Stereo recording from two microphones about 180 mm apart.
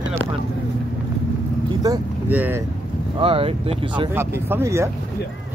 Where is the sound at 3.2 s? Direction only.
30° right (ahead or behind).